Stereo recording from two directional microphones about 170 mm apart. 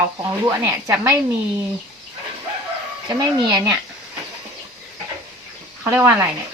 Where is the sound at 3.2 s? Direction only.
25° right (ahead or behind).